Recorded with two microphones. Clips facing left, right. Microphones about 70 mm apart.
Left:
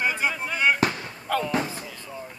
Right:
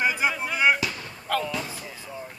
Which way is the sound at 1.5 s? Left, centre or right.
Left.